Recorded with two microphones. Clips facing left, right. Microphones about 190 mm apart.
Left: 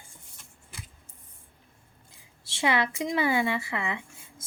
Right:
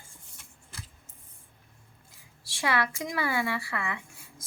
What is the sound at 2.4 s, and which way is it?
A woman's voice, 20° left (ahead or behind).